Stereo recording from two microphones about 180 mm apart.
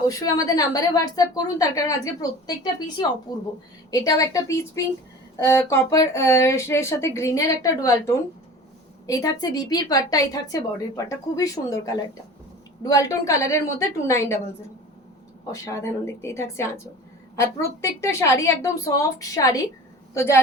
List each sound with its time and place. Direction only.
0.0 s a woman's voice: 20° left (ahead or behind)
15.5 s a woman's voice: 15° left (ahead or behind)